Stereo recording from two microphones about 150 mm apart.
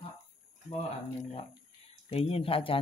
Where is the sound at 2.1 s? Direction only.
40° left (ahead or behind).